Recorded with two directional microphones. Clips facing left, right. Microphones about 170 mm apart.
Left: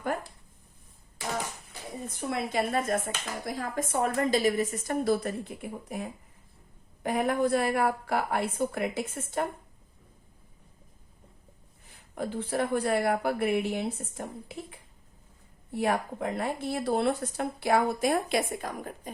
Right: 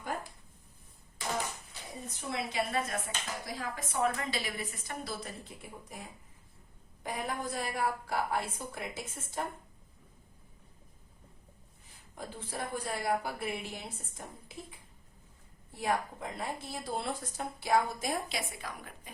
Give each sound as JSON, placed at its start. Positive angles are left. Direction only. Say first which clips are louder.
{"t": 2.0, "sound": "speech", "louder": "left 5 dB", "side_deg": 50}
{"t": 12.1, "sound": "speech", "louder": "left 11 dB", "side_deg": 65}